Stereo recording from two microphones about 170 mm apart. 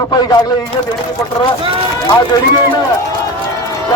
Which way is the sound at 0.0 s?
20° left (ahead or behind).